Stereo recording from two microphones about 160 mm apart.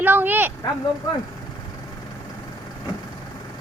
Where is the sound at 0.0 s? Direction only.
10° right (ahead or behind).